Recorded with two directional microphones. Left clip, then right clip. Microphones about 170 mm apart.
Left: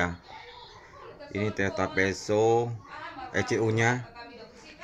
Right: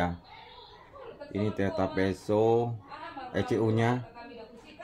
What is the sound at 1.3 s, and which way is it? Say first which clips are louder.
Speech: left 2 dB; 25° right (ahead or behind).